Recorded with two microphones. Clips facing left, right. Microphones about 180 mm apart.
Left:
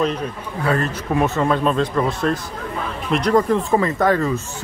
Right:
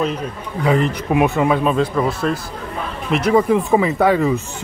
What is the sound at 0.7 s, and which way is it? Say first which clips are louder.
Speech: right 4 dB; 15° right (ahead or behind).